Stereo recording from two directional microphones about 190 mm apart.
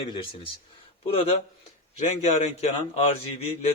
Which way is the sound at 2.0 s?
40° left (ahead or behind).